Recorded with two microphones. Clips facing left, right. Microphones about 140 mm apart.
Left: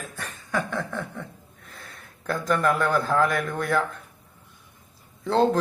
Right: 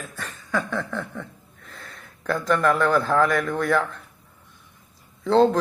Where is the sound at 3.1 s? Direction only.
45° right (ahead or behind).